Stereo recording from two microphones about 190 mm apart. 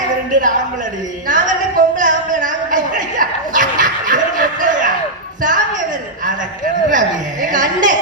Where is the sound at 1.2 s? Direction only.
45° right (ahead or behind).